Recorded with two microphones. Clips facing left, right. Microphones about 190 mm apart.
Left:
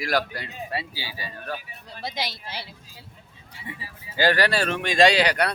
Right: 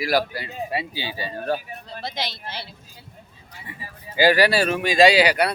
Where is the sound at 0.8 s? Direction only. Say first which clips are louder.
Right 6 dB; 20° right (ahead or behind).